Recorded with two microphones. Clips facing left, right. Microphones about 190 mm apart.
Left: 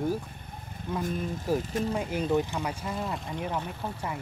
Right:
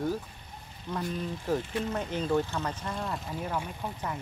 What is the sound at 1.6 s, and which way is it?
Speech, 40° left (ahead or behind).